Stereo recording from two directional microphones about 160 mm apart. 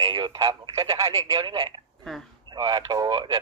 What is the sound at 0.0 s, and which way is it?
Speech, 25° right (ahead or behind).